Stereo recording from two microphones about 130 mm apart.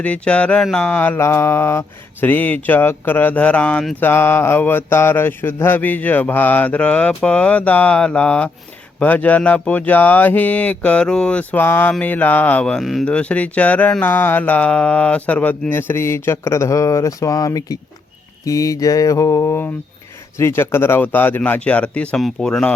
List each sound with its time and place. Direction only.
0.0 s speech: 10° left (ahead or behind)
0.9 s mantra: 15° left (ahead or behind)
2.2 s speech: 15° left (ahead or behind)
18.4 s mantra: 25° left (ahead or behind)
20.4 s speech: 20° left (ahead or behind)